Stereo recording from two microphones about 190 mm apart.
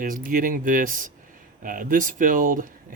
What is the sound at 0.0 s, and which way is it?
Speech, 45° right (ahead or behind).